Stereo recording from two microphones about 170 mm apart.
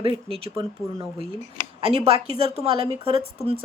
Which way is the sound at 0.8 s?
20° right (ahead or behind).